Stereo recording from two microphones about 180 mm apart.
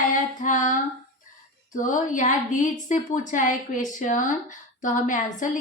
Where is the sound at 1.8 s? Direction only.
45° left (ahead or behind).